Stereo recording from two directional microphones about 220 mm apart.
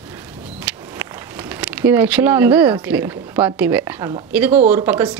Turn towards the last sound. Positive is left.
turn(degrees=-10)  # may be behind; listen again after turning